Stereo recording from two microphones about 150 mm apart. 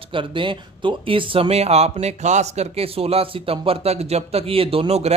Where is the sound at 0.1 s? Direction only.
35° right (ahead or behind).